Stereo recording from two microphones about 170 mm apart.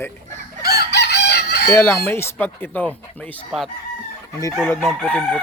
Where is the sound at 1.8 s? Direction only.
15° left (ahead or behind).